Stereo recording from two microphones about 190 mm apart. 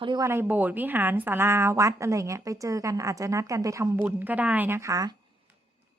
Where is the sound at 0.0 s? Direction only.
25° right (ahead or behind).